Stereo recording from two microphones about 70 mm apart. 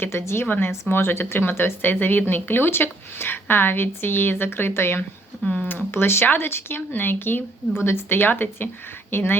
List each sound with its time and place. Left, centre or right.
0.0 s speech: left
0.4 s a woman's voice: left
5.4 s speech: centre
5.6 s speech: left